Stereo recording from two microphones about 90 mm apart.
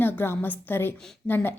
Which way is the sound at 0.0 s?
25° left (ahead or behind).